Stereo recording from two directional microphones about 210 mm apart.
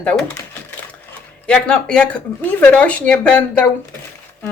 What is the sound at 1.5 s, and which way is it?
Speech, 5° left (ahead or behind).